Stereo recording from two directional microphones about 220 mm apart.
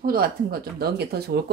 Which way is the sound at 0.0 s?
45° right (ahead or behind).